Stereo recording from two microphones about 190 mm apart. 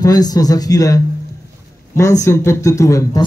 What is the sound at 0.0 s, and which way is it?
A man's voice, 20° left (ahead or behind).